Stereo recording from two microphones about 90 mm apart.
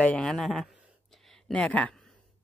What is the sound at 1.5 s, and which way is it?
Speech, 15° left (ahead or behind).